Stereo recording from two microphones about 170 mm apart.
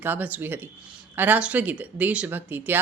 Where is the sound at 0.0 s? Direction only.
10° right (ahead or behind).